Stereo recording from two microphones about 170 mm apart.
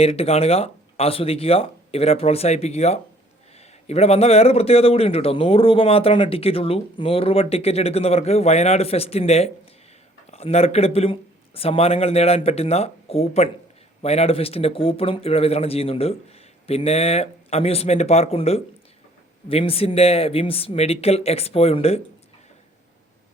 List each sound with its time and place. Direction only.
0.0 s a man's voice: 35° left (ahead or behind)